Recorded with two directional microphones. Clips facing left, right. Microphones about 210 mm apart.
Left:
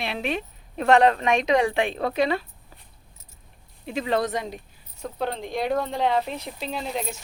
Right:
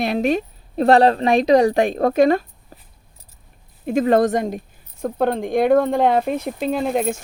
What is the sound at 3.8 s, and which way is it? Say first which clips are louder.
Speech: right 9 dB; 50° right (ahead or behind).